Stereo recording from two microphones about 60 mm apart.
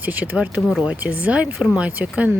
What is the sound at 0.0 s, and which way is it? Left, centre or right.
Speech, right.